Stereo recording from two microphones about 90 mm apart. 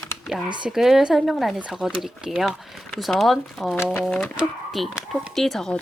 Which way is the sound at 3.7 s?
30° left (ahead or behind).